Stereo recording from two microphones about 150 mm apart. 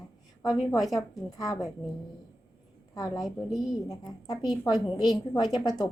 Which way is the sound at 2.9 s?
30° left (ahead or behind).